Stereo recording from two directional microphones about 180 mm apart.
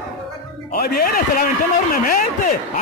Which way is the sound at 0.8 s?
55° left (ahead or behind).